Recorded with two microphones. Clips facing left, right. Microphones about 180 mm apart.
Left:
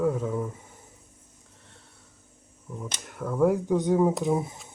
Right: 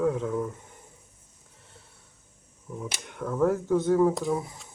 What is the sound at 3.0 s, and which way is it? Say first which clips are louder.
Speech: left 2 dB; 5° left (ahead or behind).